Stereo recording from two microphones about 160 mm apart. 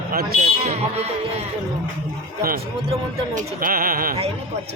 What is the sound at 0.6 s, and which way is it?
Speech, 40° right (ahead or behind).